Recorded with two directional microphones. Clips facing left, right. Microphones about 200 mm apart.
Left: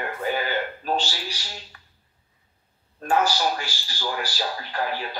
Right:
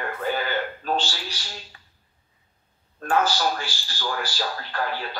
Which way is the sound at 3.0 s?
10° left (ahead or behind).